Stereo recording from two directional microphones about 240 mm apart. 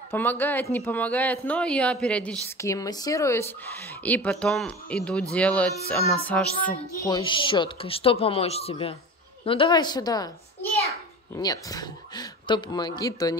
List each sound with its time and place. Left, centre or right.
0.1 s speech: centre
5.3 s music: centre
7.0 s a child's voice: centre